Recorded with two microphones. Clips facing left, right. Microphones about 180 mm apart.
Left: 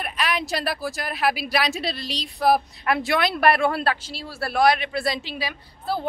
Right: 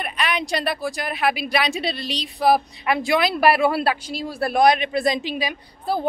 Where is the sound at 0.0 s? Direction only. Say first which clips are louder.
Right 1 dB; centre (ahead or behind).